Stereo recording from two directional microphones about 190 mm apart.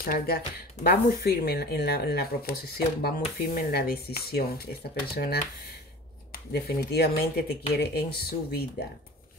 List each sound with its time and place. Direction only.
0.0 s speech: 55° left (ahead or behind)